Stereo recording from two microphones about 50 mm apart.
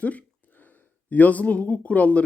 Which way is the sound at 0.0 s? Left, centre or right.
Left.